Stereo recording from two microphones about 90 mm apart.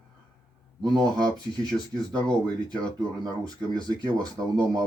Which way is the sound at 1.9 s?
50° right (ahead or behind).